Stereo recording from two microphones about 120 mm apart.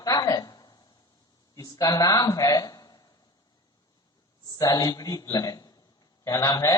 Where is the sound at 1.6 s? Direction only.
30° left (ahead or behind).